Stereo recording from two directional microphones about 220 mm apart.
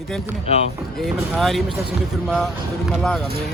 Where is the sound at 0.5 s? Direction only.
30° left (ahead or behind).